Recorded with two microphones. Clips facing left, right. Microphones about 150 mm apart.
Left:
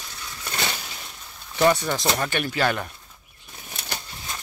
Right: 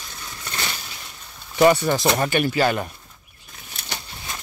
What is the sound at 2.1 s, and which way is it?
Speech, 15° right (ahead or behind).